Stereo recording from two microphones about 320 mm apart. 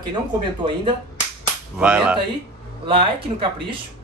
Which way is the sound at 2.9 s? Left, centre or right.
Centre.